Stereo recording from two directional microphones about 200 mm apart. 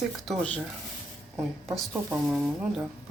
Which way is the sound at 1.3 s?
10° right (ahead or behind).